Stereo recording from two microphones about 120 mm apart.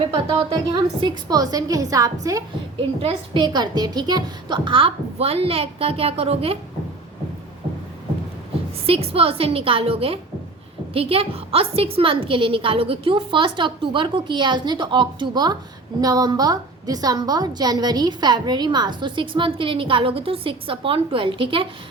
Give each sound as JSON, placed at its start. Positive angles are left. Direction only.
{"t": 0.7, "sound": "a woman's voice", "side_deg": -35}
{"t": 3.0, "sound": "a woman's voice", "side_deg": -55}
{"t": 3.4, "sound": "a woman's voice", "side_deg": -35}
{"t": 8.9, "sound": "a woman's voice", "side_deg": -50}